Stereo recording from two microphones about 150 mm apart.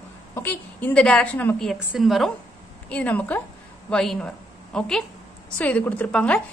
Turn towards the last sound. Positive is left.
turn(degrees=10)  # may be behind; listen again after turning